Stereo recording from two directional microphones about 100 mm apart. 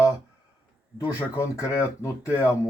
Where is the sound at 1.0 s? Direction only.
35° left (ahead or behind).